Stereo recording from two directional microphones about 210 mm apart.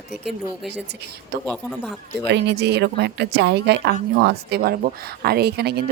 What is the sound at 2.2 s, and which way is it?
Speech, 55° right (ahead or behind).